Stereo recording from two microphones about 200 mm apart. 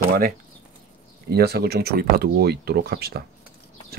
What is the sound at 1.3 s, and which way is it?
Speech, 50° right (ahead or behind).